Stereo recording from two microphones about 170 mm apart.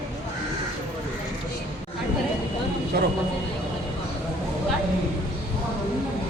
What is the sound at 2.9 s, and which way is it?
Vehicle, 60° right (ahead or behind).